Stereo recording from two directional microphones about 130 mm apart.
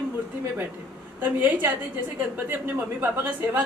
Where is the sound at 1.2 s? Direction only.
15° right (ahead or behind).